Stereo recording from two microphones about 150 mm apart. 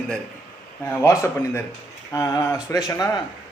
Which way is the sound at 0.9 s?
20° left (ahead or behind).